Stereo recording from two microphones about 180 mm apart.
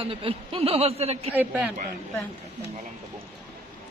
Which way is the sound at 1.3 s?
10° right (ahead or behind).